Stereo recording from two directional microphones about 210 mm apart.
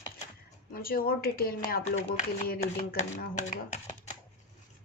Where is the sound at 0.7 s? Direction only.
45° left (ahead or behind).